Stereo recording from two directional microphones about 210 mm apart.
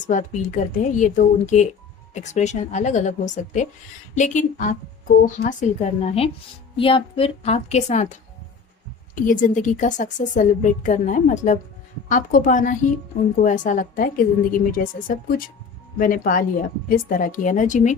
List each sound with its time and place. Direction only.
0.1 s a woman's voice: 35° left (ahead or behind)